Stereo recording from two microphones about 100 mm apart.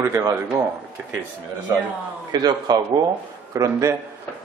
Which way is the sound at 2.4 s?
45° right (ahead or behind).